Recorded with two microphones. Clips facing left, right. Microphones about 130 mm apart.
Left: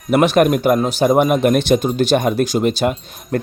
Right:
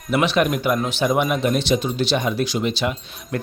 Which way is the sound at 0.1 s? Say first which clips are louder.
Left 6 dB; 45° left (ahead or behind).